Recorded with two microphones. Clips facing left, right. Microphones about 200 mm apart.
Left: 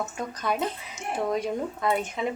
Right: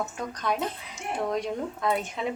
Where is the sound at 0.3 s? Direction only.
5° left (ahead or behind).